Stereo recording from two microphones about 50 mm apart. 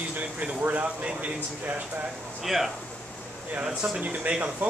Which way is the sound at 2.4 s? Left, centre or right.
Centre.